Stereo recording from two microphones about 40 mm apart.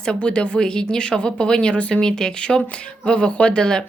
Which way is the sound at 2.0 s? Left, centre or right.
Centre.